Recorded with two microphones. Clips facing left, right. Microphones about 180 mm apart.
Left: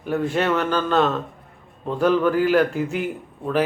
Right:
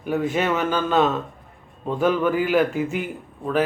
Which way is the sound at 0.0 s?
5° right (ahead or behind).